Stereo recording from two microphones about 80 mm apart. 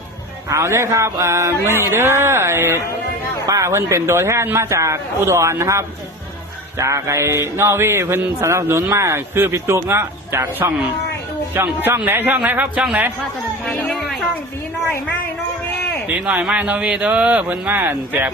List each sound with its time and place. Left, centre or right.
0.5 s a sound: right
11.6 s a man's voice: right
13.7 s speech: centre
16.0 s a man's voice: centre